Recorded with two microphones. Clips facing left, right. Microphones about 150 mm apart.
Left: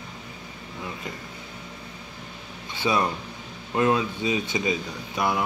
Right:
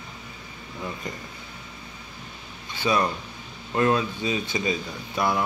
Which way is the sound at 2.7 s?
25° left (ahead or behind).